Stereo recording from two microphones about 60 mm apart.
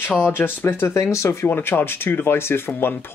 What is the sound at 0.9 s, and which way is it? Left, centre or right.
Speech, left.